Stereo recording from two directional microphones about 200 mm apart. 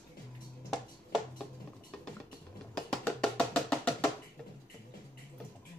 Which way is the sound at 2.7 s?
5° left (ahead or behind).